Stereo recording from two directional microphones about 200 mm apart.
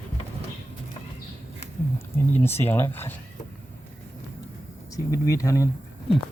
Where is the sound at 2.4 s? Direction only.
10° left (ahead or behind).